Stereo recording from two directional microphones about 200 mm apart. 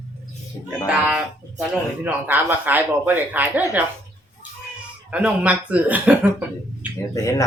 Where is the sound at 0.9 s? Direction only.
5° right (ahead or behind).